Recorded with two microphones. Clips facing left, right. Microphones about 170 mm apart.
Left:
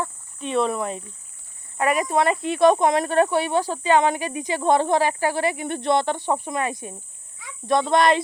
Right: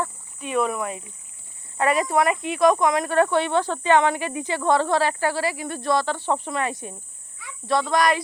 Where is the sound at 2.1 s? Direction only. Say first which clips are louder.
Left 1 dB; 30° left (ahead or behind).